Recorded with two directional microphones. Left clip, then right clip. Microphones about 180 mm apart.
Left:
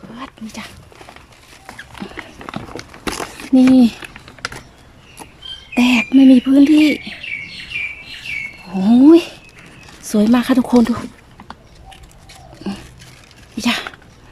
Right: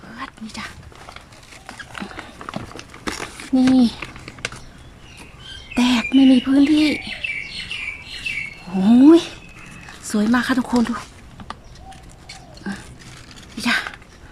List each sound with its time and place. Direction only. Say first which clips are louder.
0.2 s dog: even; 15° left (ahead or behind)
2.4 s run: left 1 dB; 10° left (ahead or behind)
3.2 s a sound: left 6 dB; 10° left (ahead or behind)
5.7 s speech: left 4 dB; 10° left (ahead or behind)
8.7 s speech: left 2 dB; centre (ahead or behind)
12.6 s dog: left 3 dB; 15° left (ahead or behind)
13.6 s a sound: left 1 dB; 15° left (ahead or behind)